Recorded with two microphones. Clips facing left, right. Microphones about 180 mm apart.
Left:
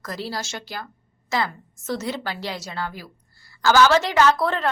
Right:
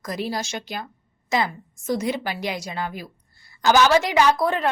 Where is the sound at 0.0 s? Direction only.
15° right (ahead or behind).